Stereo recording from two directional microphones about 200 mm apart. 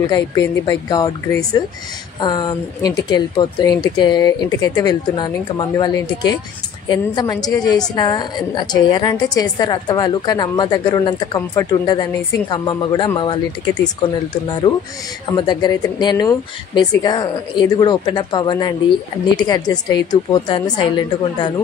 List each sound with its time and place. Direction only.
0.1 s speech: 15° left (ahead or behind)
15.3 s speech: 20° left (ahead or behind)